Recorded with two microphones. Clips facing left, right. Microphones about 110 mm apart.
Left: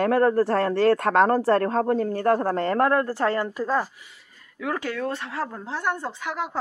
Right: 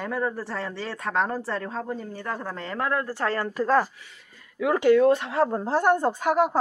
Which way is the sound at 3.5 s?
10° left (ahead or behind).